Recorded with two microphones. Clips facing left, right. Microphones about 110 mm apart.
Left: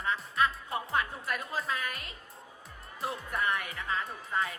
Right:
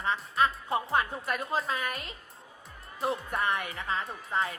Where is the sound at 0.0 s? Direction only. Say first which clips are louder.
Right 2 dB; 25° right (ahead or behind).